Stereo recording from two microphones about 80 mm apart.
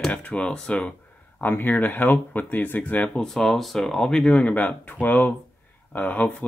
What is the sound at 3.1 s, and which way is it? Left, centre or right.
Speech, centre.